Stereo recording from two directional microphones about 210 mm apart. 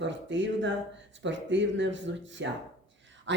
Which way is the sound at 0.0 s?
60° right (ahead or behind).